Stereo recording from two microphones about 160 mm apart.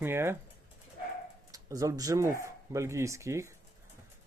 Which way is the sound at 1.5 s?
20° right (ahead or behind).